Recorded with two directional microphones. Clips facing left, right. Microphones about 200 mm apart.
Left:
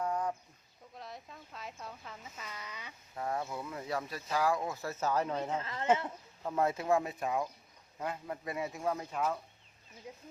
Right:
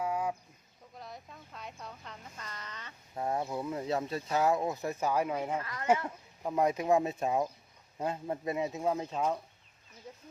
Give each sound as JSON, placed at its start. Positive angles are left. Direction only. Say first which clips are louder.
{"t": 0.0, "sound": "a sound", "louder": "right 1 dB", "side_deg": -10}
{"t": 0.9, "sound": "speech", "louder": "even", "side_deg": 0}
{"t": 3.2, "sound": "speech", "louder": "right 4 dB", "side_deg": -25}
{"t": 5.5, "sound": "speech", "louder": "even", "side_deg": 25}
{"t": 6.4, "sound": "speech", "louder": "right 3 dB", "side_deg": -15}
{"t": 10.1, "sound": "speech", "louder": "left 1 dB", "side_deg": 10}